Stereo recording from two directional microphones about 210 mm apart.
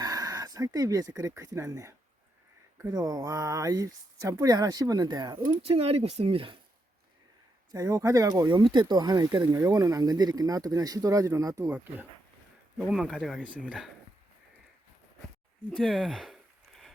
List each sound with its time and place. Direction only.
0.0 s speech: 15° right (ahead or behind)
7.7 s speech: 15° right (ahead or behind)
12.9 s speech: centre (ahead or behind)
15.7 s a sound: centre (ahead or behind)